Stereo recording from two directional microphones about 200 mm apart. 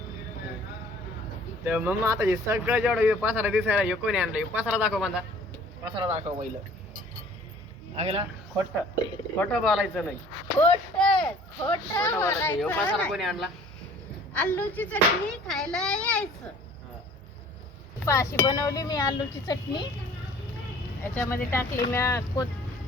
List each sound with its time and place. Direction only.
1.6 s speech: 10° right (ahead or behind)
5.8 s speech: 25° right (ahead or behind)
7.9 s a man's voice: 30° right (ahead or behind)
9.4 s a child's voice: centre (ahead or behind)
11.0 s a sound: 5° left (ahead or behind)
11.9 s a child's voice: 10° left (ahead or behind)
18.0 s speech: 15° left (ahead or behind)
21.0 s speech: 10° left (ahead or behind)